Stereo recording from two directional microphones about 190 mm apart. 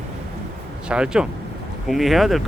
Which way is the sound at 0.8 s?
5° right (ahead or behind).